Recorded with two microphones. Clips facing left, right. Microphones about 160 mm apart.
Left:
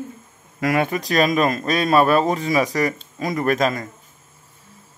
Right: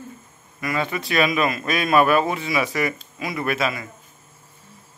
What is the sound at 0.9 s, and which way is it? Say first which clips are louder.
A man's voice: left 3 dB; 40° left (ahead or behind).